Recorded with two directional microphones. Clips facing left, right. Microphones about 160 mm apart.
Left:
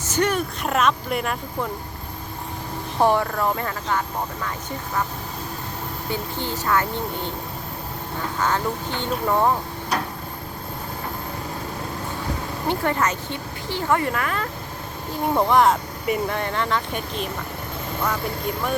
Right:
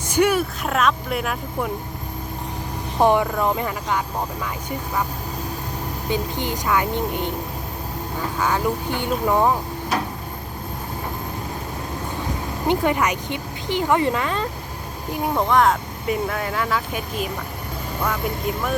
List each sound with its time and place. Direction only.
0.1 s speech: 10° right (ahead or behind)
3.0 s speech: 15° right (ahead or behind)
6.1 s speech: 15° right (ahead or behind)
12.6 s speech: 15° right (ahead or behind)
15.4 s speech: centre (ahead or behind)